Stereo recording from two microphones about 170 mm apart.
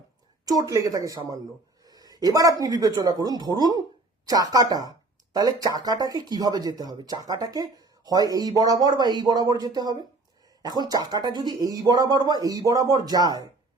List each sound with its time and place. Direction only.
0.4 s speech: 20° right (ahead or behind)